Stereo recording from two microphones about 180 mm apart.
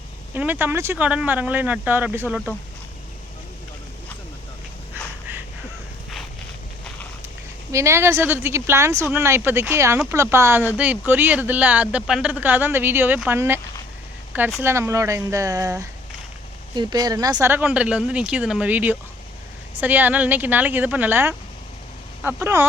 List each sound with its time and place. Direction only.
0.3 s speech: 10° right (ahead or behind)
7.7 s speech: 15° right (ahead or behind)
14.6 s speech: 15° right (ahead or behind)